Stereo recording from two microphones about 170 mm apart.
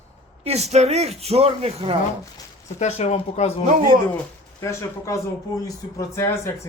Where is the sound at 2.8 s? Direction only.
40° left (ahead or behind).